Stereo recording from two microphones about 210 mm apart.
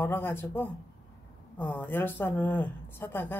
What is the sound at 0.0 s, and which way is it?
A woman's voice, 10° left (ahead or behind).